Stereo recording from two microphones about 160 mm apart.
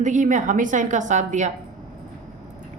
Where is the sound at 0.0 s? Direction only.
50° right (ahead or behind).